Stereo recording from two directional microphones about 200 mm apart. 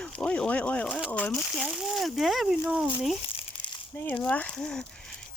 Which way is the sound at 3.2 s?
25° left (ahead or behind).